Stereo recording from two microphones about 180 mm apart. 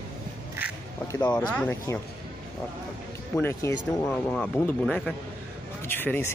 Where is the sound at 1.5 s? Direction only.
10° left (ahead or behind).